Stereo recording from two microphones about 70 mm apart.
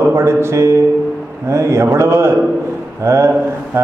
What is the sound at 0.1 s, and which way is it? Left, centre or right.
A man's voice, right.